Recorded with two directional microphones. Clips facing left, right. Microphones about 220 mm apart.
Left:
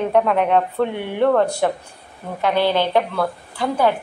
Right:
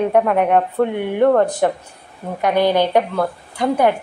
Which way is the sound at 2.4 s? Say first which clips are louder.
Right 3 dB; 15° right (ahead or behind).